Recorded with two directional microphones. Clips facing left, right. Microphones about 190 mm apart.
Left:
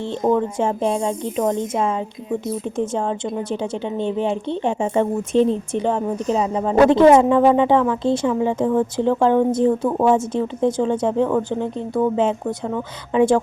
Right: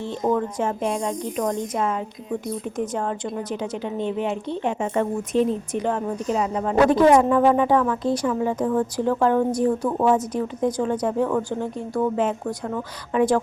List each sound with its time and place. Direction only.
0.0 s speech: 30° left (ahead or behind)